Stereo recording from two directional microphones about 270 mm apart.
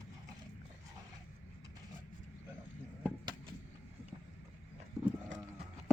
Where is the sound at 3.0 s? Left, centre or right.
Centre.